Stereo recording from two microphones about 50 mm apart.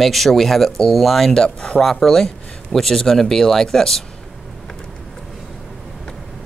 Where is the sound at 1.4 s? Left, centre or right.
Centre.